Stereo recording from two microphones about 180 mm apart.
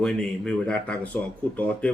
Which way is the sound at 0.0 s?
5° left (ahead or behind).